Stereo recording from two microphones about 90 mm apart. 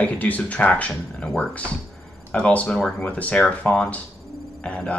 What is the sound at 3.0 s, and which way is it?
Speech, 15° left (ahead or behind).